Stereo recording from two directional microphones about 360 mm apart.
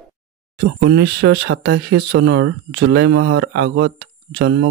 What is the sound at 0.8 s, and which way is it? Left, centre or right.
Speech, right.